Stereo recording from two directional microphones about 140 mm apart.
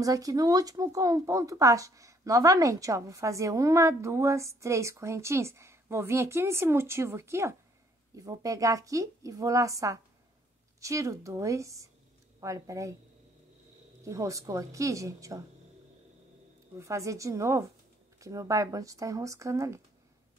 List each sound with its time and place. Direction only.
0.0 s speech: 25° right (ahead or behind)
14.0 s speech: 25° right (ahead or behind)
16.7 s speech: 20° right (ahead or behind)